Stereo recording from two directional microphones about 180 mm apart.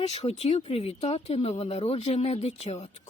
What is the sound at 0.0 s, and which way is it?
Speech, 35° left (ahead or behind).